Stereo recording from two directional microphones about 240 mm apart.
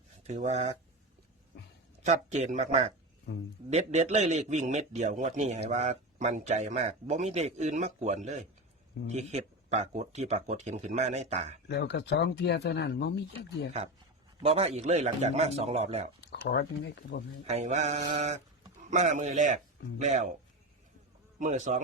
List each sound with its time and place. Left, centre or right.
0.3 s a man's voice: right
2.0 s a man's voice: right
3.3 s speech: left
3.7 s a man's voice: right
11.7 s speech: left
14.4 s a man's voice: right
16.2 s a sound: left
17.4 s a man's voice: right
21.3 s speech: right